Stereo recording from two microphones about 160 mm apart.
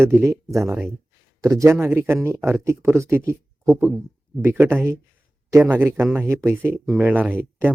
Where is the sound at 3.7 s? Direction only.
Centre (ahead or behind).